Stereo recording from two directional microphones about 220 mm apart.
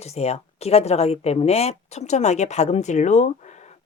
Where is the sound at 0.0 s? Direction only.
30° left (ahead or behind).